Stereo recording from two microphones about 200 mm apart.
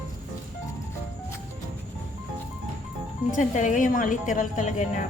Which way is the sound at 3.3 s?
40° left (ahead or behind).